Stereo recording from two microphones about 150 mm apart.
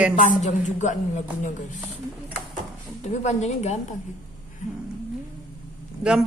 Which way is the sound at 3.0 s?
50° left (ahead or behind).